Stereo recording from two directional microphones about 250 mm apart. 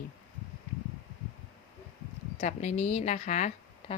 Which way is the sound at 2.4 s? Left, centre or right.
Left.